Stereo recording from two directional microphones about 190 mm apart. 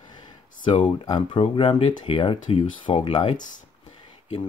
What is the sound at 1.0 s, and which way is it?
Speech, 25° left (ahead or behind).